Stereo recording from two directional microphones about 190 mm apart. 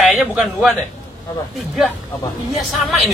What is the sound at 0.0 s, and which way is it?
Speech, centre (ahead or behind).